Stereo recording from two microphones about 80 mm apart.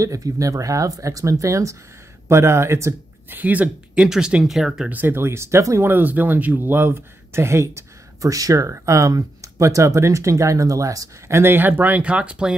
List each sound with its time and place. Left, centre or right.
0.0 s speech: right
3.3 s speech: centre
4.8 s speech: right
5.9 s speech: right